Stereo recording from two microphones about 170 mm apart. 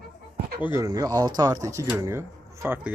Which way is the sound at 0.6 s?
15° right (ahead or behind).